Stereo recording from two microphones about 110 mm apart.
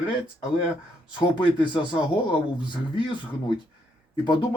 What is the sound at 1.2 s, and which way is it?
Speech, 45° left (ahead or behind).